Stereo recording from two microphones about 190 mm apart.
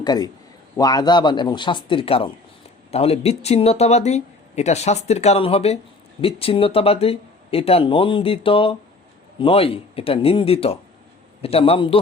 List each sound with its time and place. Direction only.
0.0 s a man's voice: 20° left (ahead or behind)